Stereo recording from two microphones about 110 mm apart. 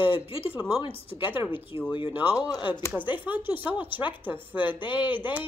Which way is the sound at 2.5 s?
45° left (ahead or behind).